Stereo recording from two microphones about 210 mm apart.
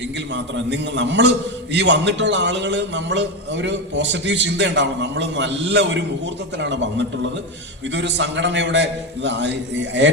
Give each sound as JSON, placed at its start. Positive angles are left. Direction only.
{"t": 0.3, "sound": "a man's voice", "side_deg": -60}